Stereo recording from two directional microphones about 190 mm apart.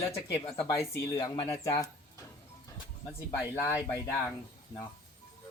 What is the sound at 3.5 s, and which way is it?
Speech, 15° left (ahead or behind).